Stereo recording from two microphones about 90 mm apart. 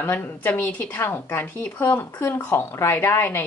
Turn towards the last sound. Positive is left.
turn(degrees=25)  # may be behind; listen again after turning